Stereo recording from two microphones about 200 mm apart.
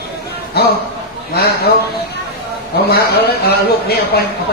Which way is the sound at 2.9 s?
50° left (ahead or behind).